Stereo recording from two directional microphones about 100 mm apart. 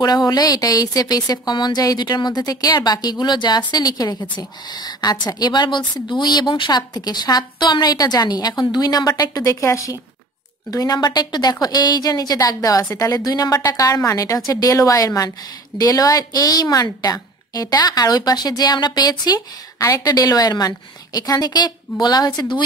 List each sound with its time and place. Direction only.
0.0 s a woman's voice: 40° left (ahead or behind)